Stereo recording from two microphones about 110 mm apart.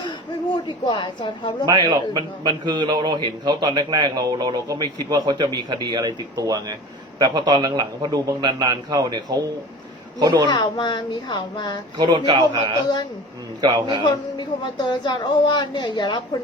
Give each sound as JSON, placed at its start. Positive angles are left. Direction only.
{"t": 0.5, "sound": "speech", "side_deg": 45}
{"t": 1.6, "sound": "a man's voice", "side_deg": -40}
{"t": 10.5, "sound": "speech", "side_deg": 40}
{"t": 11.9, "sound": "a man's voice", "side_deg": -40}
{"t": 14.0, "sound": "speech", "side_deg": 45}